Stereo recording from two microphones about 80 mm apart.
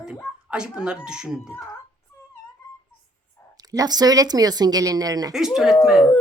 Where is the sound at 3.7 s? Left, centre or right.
Right.